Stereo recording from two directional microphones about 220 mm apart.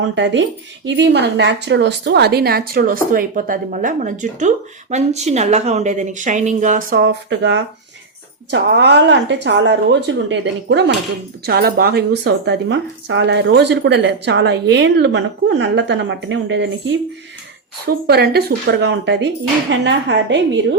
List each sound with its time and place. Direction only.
0.2 s a woman's voice: 55° right (ahead or behind)